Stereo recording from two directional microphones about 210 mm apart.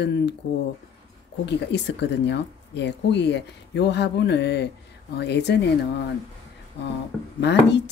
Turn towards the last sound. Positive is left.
turn(degrees=55)  # may be behind; listen again after turning